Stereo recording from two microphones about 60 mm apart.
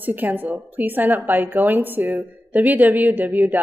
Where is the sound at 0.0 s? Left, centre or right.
Right.